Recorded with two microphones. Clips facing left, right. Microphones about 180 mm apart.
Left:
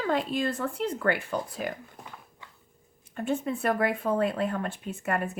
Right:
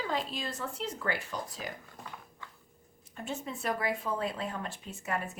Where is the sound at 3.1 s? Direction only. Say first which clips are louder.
Left 9 dB; 55° left (ahead or behind).